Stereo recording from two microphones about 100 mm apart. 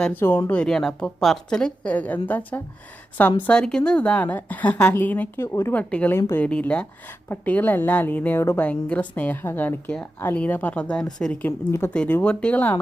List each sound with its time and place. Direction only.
0.2 s speech: 20° left (ahead or behind)
0.6 s a woman's voice: 5° left (ahead or behind); by 5.7 s 25° left (ahead or behind)
5.7 s a woman's voice: 15° left (ahead or behind)
6.1 s speech: 25° left (ahead or behind)
6.4 s a woman's voice: 10° left (ahead or behind)
11.4 s a woman's voice: 25° left (ahead or behind)